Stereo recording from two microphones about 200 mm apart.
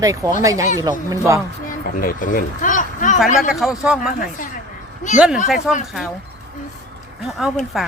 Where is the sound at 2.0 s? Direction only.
45° left (ahead or behind).